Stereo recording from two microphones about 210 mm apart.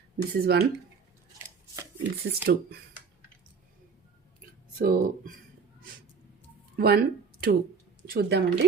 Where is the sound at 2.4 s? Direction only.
50° right (ahead or behind).